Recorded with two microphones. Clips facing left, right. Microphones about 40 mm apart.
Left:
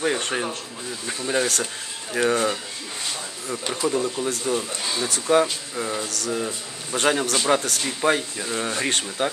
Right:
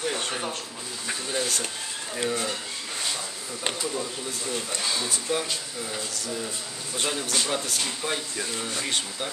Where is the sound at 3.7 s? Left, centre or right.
Left.